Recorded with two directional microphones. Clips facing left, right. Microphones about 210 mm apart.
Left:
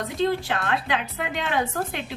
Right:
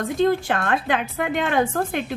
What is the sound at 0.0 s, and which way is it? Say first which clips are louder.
A woman's voice: right 4 dB; 50° right (ahead or behind).